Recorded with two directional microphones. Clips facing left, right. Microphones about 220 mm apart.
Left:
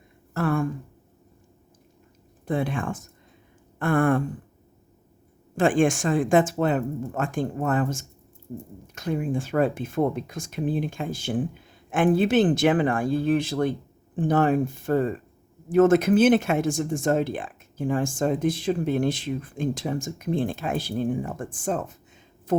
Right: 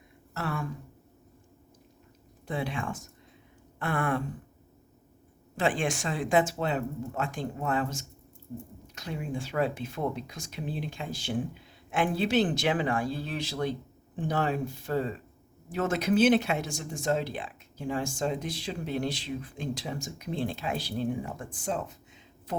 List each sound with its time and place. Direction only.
0.3 s speech: 50° left (ahead or behind)
2.5 s speech: 50° left (ahead or behind)
5.5 s speech: 50° left (ahead or behind)